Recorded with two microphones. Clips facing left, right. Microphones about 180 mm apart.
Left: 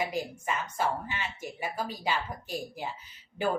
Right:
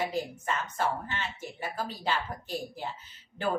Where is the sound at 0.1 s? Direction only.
10° left (ahead or behind).